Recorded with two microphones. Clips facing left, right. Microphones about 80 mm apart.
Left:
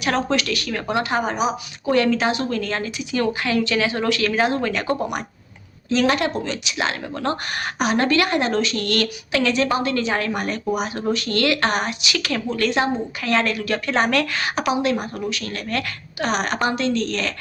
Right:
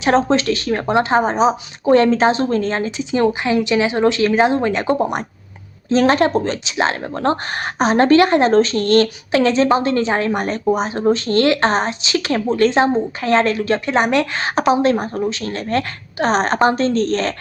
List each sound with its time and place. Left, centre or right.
0.0 s speech: right